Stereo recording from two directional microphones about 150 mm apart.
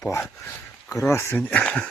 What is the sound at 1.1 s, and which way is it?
Speech, 15° left (ahead or behind).